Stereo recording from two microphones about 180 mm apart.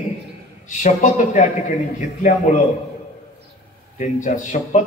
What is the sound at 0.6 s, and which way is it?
Speech, 45° left (ahead or behind).